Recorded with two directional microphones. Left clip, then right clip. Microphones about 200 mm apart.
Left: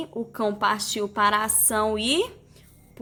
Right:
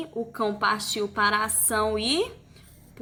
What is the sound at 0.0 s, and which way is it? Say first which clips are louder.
A woman's voice: left 1 dB; 45° left (ahead or behind).